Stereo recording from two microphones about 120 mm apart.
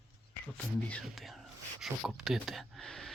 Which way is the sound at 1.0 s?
Centre (ahead or behind).